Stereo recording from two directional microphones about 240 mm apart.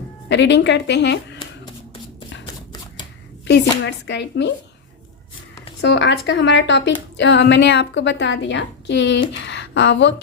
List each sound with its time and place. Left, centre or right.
0.3 s a woman's voice: left
3.4 s a woman's voice: left
5.8 s a woman's voice: left